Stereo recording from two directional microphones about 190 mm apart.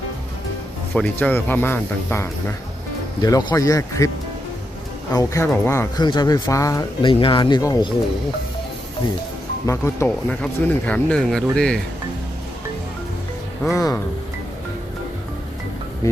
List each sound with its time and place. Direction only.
0.9 s speech: 10° left (ahead or behind)
5.1 s speech: 15° left (ahead or behind)
9.6 s speech: 15° left (ahead or behind)
13.7 s speech: 15° left (ahead or behind)